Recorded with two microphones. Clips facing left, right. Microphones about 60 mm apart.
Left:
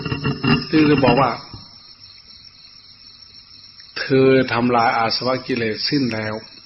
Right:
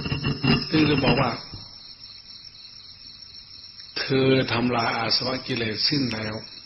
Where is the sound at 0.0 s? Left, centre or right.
Left.